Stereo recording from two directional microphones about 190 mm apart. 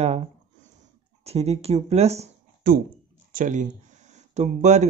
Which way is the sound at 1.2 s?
35° right (ahead or behind).